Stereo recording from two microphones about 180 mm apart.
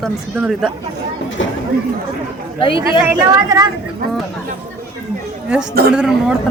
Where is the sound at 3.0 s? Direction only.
20° right (ahead or behind).